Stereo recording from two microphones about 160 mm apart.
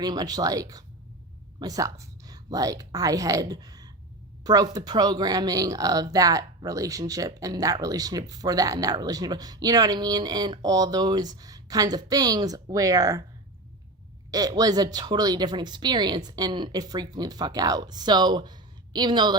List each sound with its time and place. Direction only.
0.0 s a woman's voice: 25° right (ahead or behind)
14.3 s speech: 25° right (ahead or behind)